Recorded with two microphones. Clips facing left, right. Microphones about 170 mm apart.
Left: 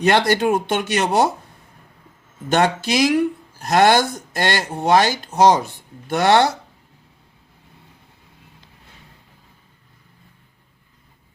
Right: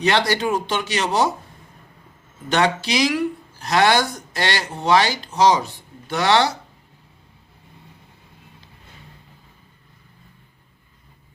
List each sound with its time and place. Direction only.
0.0 s speech: 50° left (ahead or behind)
2.5 s speech: 50° left (ahead or behind)